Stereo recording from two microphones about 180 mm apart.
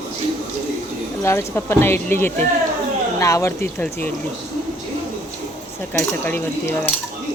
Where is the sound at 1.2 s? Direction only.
15° left (ahead or behind).